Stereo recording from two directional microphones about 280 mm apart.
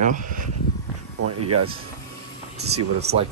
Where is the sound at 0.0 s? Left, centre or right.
Right.